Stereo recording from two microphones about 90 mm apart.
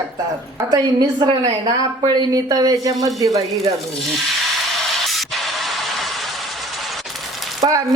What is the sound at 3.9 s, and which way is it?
Speech, centre (ahead or behind).